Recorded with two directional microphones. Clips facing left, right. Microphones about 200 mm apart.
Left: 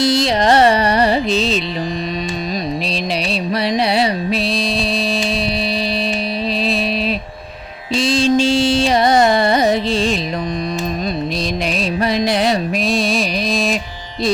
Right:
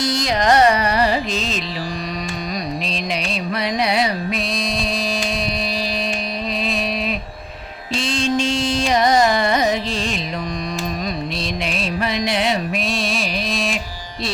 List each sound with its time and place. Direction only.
0.0 s carnatic music: 25° left (ahead or behind)
3.5 s music: 30° left (ahead or behind)
7.9 s carnatic music: 35° left (ahead or behind)
11.8 s music: 35° left (ahead or behind)